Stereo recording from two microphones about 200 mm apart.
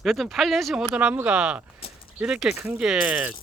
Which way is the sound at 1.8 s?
30° left (ahead or behind).